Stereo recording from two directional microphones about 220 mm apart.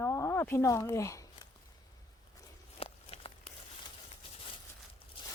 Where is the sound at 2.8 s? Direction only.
25° left (ahead or behind).